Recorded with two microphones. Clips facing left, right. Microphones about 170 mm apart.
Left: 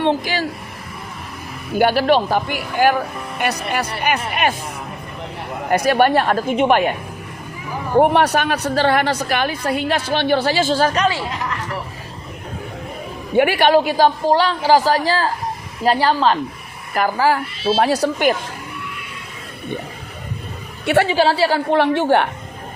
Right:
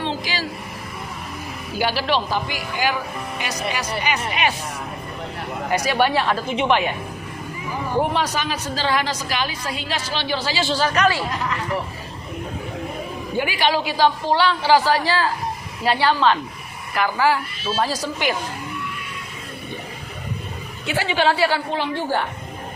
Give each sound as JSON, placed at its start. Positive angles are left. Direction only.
{"t": 0.0, "sound": "speech", "side_deg": 55}
{"t": 1.7, "sound": "a woman's voice", "side_deg": 55}
{"t": 5.7, "sound": "a woman's voice", "side_deg": 50}
{"t": 7.9, "sound": "a woman's voice", "side_deg": 60}
{"t": 13.3, "sound": "a woman's voice", "side_deg": 65}
{"t": 17.7, "sound": "a woman's voice", "side_deg": 65}
{"t": 20.8, "sound": "a woman's voice", "side_deg": 65}
{"t": 21.1, "sound": "speech", "side_deg": 35}
{"t": 21.7, "sound": "a woman's voice", "side_deg": 65}